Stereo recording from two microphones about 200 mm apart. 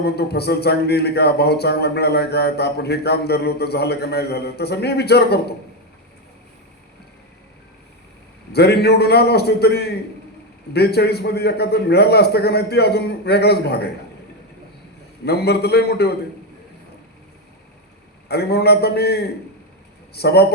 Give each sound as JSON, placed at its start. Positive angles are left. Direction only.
{"t": 0.0, "sound": "speech", "side_deg": 55}
{"t": 8.5, "sound": "speech", "side_deg": 55}
{"t": 15.2, "sound": "speech", "side_deg": 55}
{"t": 18.3, "sound": "speech", "side_deg": 55}